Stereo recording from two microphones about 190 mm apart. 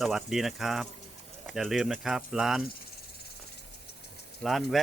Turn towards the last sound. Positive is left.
turn(degrees=0)  # may be behind; listen again after turning